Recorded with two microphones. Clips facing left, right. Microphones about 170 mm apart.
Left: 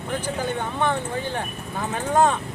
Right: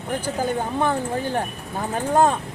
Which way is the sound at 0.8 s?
40° right (ahead or behind).